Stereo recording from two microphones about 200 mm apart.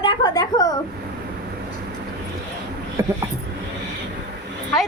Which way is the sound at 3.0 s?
15° right (ahead or behind).